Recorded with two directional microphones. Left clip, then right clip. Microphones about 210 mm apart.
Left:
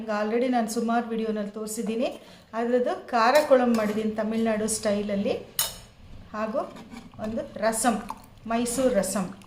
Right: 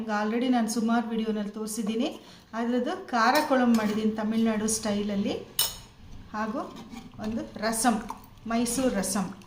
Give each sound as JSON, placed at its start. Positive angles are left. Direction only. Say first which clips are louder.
{"t": 0.1, "sound": "a woman's voice", "louder": "left 2 dB", "side_deg": 15}